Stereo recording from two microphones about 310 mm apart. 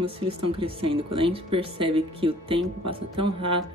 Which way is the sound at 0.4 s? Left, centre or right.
Centre.